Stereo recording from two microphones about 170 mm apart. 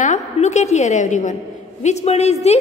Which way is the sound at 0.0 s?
40° left (ahead or behind).